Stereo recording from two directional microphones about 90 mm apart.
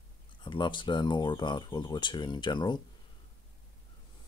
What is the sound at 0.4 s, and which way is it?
Speech, 65° left (ahead or behind).